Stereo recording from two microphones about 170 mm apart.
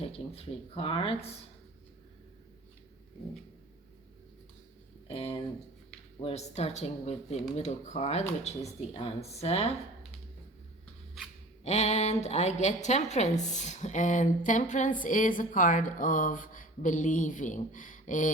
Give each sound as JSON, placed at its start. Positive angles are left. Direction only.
{"t": 0.0, "sound": "speech", "side_deg": 35}
{"t": 5.0, "sound": "speech", "side_deg": 35}
{"t": 11.6, "sound": "a woman's voice", "side_deg": 40}